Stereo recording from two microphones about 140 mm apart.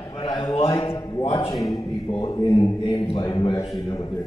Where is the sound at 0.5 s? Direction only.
45° left (ahead or behind).